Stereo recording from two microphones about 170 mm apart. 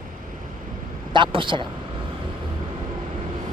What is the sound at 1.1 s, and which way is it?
Speech, 30° right (ahead or behind).